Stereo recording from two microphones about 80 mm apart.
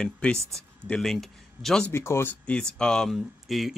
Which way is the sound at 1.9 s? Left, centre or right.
Left.